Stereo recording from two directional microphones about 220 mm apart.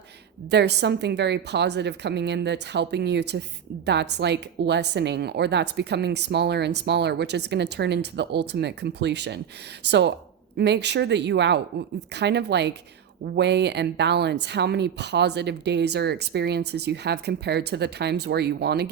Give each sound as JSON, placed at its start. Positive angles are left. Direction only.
{"t": 0.5, "sound": "a woman's voice", "side_deg": -50}